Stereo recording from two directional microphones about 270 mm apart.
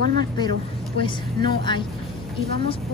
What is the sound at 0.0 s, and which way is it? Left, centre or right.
Speech, right.